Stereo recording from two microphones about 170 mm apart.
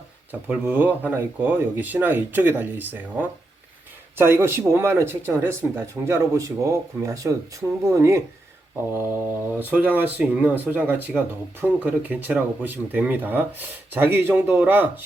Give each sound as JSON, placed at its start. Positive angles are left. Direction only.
{"t": 0.3, "sound": "speech", "side_deg": -10}